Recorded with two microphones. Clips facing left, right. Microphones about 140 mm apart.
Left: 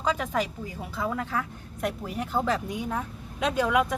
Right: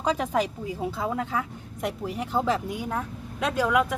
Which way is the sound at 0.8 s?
20° right (ahead or behind).